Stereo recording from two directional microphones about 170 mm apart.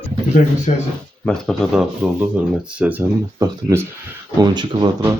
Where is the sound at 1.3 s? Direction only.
Centre (ahead or behind).